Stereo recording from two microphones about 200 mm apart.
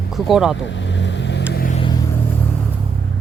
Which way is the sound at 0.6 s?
65° left (ahead or behind).